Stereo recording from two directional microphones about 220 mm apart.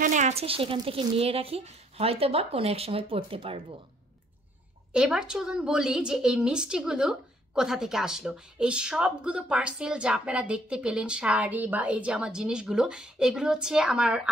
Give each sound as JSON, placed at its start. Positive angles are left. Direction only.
{"t": 0.0, "sound": "a woman's voice", "side_deg": -35}
{"t": 4.9, "sound": "a woman's voice", "side_deg": -5}